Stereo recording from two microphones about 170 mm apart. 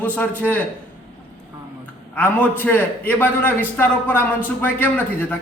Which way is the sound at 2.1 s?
10° left (ahead or behind).